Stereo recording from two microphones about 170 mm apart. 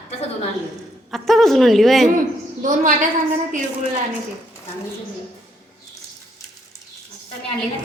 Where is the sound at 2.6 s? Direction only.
50° right (ahead or behind).